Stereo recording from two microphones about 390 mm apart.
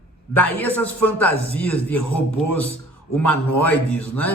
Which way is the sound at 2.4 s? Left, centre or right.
Left.